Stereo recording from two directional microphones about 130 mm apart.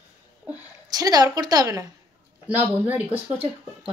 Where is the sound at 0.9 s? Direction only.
30° right (ahead or behind).